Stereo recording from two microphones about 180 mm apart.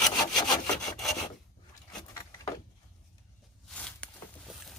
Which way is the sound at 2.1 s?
20° left (ahead or behind).